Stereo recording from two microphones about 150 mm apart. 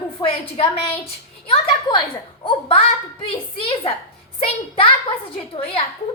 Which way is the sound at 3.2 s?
35° left (ahead or behind).